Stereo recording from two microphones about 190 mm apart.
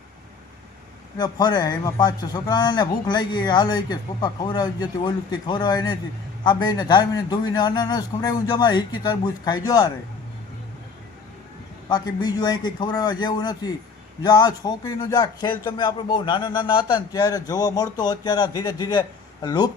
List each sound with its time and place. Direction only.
1.2 s a man's voice: 20° left (ahead or behind)
11.9 s a man's voice: 20° left (ahead or behind)